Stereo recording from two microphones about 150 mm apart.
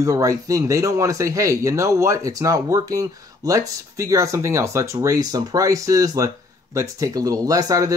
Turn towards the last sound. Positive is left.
turn(degrees=-25)  # may be behind; listen again after turning